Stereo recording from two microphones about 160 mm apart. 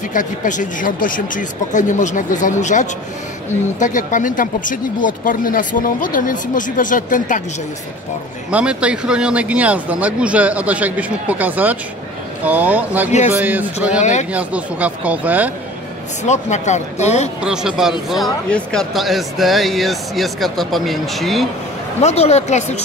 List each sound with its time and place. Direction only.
0.1 s speech: 55° left (ahead or behind)
8.5 s speech: 5° right (ahead or behind)
16.3 s speech: 45° left (ahead or behind)
17.4 s speech: 5° right (ahead or behind)
22.0 s speech: 40° left (ahead or behind)